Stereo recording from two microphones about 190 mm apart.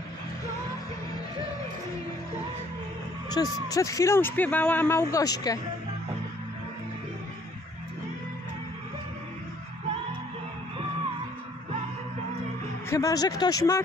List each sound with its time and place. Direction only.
3.3 s speech: 20° left (ahead or behind)
12.9 s speech: 20° left (ahead or behind)